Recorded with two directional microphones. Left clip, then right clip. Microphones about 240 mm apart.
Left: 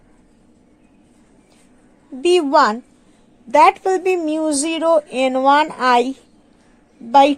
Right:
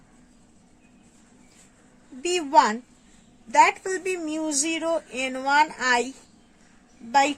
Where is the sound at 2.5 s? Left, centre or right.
Centre.